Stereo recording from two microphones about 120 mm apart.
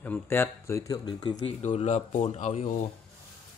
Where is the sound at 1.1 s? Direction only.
40° left (ahead or behind).